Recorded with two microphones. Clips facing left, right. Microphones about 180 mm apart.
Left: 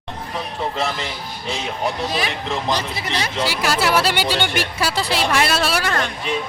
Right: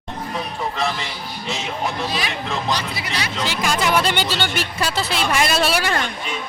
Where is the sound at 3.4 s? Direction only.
5° left (ahead or behind).